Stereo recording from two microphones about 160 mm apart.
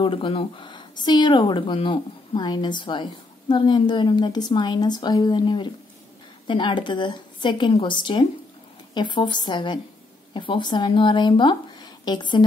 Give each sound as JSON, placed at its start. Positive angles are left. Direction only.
{"t": 0.0, "sound": "a woman's voice", "side_deg": 30}